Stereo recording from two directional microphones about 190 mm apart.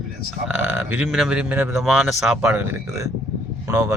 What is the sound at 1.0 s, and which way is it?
Speech, centre (ahead or behind).